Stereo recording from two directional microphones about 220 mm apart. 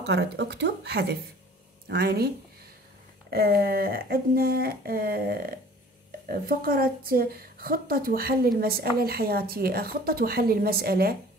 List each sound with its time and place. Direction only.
0.0 s a woman's voice: 50° right (ahead or behind)